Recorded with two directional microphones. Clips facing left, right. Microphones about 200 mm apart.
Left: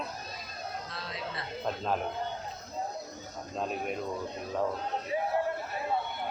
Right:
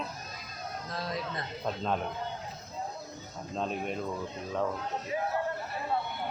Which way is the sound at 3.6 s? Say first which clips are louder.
Even; 5° left (ahead or behind).